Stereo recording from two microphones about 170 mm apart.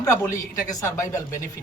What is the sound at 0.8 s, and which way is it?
Speech, 20° left (ahead or behind).